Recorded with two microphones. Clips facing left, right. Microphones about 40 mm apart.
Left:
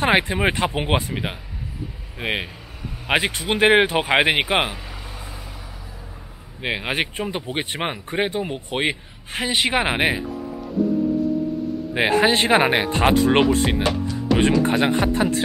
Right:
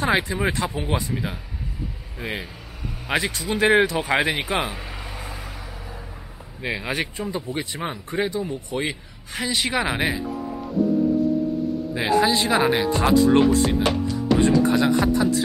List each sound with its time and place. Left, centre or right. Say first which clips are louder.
0.0 s speech: left 3 dB; left
4.7 s vehicle: right 2 dB; centre
5.1 s vehicle: right 2 dB; right
6.6 s speech: left 2 dB; left
11.9 s speech: left 3 dB; left